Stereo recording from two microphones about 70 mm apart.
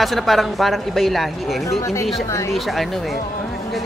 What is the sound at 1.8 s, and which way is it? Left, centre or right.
Speech, left.